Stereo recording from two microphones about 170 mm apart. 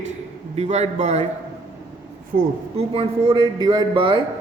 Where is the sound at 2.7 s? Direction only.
35° right (ahead or behind).